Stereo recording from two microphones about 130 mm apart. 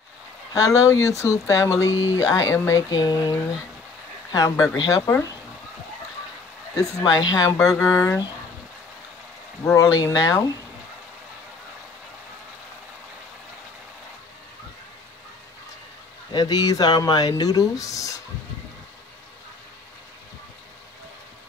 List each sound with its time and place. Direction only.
0.5 s speech: 25° left (ahead or behind)
6.8 s speech: 30° left (ahead or behind)
9.8 s speech: 30° left (ahead or behind)
16.3 s speech: 30° left (ahead or behind)